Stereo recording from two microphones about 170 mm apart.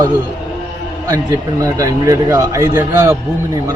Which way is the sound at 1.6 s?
20° right (ahead or behind).